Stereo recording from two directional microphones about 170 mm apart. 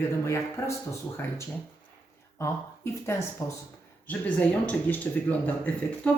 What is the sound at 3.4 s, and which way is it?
Speech, 15° left (ahead or behind).